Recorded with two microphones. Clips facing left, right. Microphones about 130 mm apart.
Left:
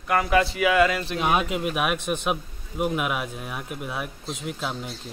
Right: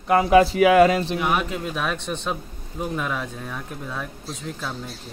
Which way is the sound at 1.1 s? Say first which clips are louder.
Even; 20° left (ahead or behind).